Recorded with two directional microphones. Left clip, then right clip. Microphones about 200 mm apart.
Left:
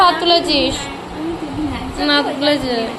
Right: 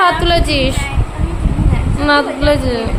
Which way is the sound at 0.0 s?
30° right (ahead or behind).